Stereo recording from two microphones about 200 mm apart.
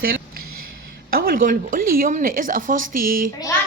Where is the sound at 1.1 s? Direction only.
45° right (ahead or behind).